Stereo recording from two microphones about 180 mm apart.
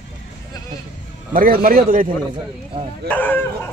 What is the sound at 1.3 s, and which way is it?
Speech, 55° right (ahead or behind).